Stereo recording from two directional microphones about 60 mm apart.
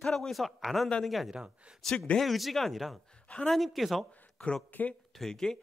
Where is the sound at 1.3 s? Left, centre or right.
Centre.